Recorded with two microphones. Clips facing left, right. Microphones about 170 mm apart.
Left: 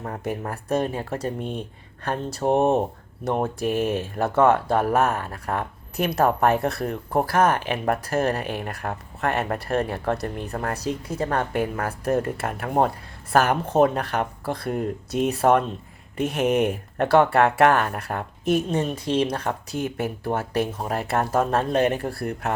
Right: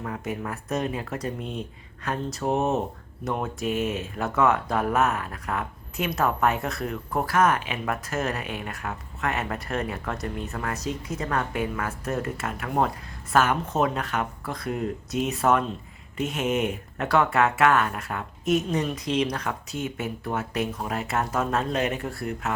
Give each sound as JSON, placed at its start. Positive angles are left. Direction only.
{"t": 0.0, "sound": "speech", "side_deg": 40}
{"t": 14.0, "sound": "speech", "side_deg": 35}